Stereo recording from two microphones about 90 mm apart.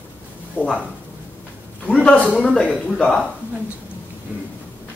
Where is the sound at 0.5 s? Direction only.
15° left (ahead or behind).